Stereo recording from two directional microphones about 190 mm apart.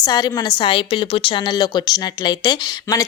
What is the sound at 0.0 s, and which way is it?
A woman's voice, 20° left (ahead or behind).